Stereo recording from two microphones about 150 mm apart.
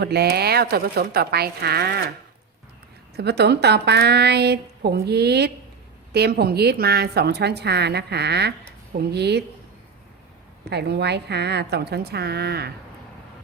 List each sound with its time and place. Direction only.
0.0 s a woman's voice: 90° right
3.2 s a woman's voice: 90° right
10.7 s a woman's voice: 90° right